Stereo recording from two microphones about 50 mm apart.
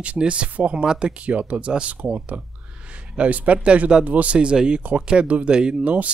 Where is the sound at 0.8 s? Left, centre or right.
Centre.